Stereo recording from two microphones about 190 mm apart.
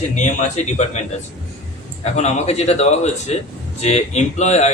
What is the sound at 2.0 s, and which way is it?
Speech, 35° left (ahead or behind).